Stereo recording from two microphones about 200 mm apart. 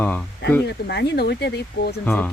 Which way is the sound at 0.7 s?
55° left (ahead or behind).